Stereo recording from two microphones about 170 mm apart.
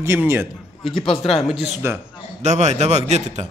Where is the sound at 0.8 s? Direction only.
Centre (ahead or behind).